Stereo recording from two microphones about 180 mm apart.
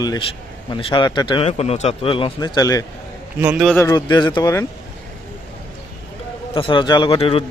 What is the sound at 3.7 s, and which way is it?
Speech, 15° left (ahead or behind).